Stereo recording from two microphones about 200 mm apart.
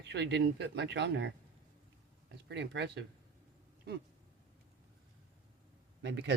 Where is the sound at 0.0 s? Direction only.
60° right (ahead or behind).